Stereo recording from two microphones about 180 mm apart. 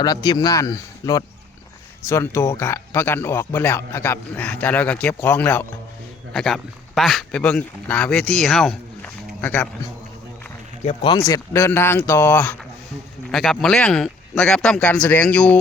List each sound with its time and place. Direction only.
0.0 s speech: 20° left (ahead or behind)
10.8 s speech: 30° left (ahead or behind)
11.3 s speech: 15° left (ahead or behind)